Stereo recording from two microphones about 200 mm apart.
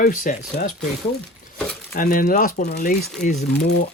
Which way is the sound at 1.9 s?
45° left (ahead or behind).